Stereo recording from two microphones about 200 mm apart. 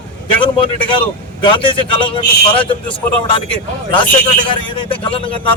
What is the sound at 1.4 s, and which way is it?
A man's voice, 25° left (ahead or behind).